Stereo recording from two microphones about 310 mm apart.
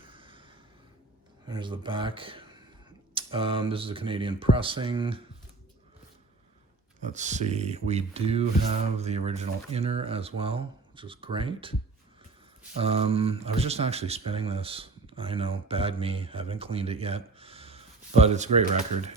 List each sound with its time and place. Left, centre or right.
0.0 s a sound: centre
1.5 s speech: centre
7.0 s speech: right
12.8 s speech: centre